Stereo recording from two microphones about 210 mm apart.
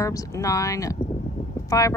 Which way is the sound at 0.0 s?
15° left (ahead or behind).